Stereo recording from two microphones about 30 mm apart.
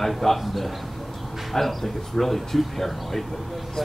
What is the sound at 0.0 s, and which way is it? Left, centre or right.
Speech, centre.